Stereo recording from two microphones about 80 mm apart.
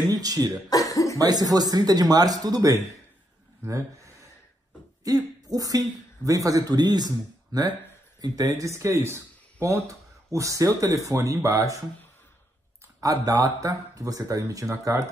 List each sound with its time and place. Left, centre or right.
0.1 s speech: right
0.7 s cough: left
1.1 s speech: right
8.5 s speech: right
13.0 s speech: right